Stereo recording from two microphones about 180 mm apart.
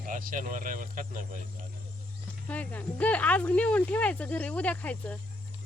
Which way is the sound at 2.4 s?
10° left (ahead or behind).